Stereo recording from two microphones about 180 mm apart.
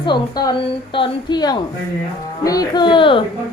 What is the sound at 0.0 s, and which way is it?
A woman's voice, 25° left (ahead or behind).